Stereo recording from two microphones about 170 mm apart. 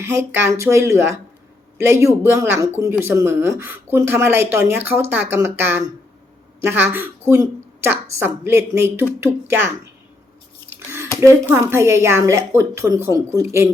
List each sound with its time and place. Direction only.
0.0 s a woman's voice: 15° right (ahead or behind)
11.2 s a woman's voice: 15° right (ahead or behind)